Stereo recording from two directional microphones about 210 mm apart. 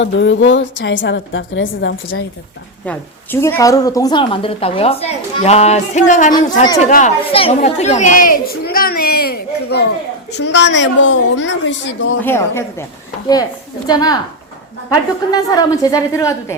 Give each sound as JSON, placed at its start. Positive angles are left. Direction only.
{"t": 0.0, "sound": "a woman's voice", "side_deg": 60}
{"t": 3.4, "sound": "a woman's voice", "side_deg": 15}
{"t": 12.2, "sound": "a woman's voice", "side_deg": 10}
{"t": 13.8, "sound": "a woman's voice", "side_deg": 20}